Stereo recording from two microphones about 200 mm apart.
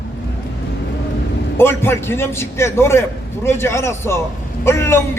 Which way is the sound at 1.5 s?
10° left (ahead or behind).